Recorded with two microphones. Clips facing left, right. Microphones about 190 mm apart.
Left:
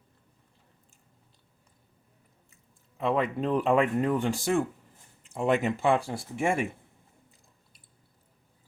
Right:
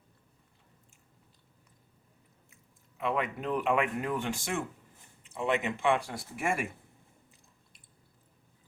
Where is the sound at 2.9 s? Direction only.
30° left (ahead or behind).